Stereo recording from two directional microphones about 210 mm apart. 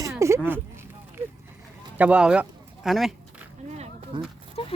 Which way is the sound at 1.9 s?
5° right (ahead or behind).